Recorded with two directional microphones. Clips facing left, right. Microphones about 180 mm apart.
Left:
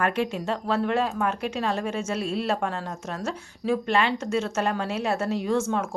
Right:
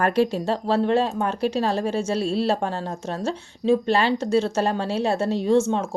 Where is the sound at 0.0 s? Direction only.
35° right (ahead or behind).